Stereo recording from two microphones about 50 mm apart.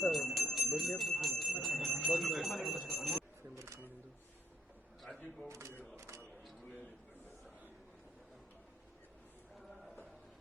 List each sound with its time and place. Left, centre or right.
0.1 s jingle bell: centre
3.5 s single-lens reflex camera: right
5.5 s a sound: right